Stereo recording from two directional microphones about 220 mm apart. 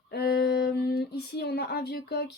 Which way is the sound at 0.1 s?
45° left (ahead or behind).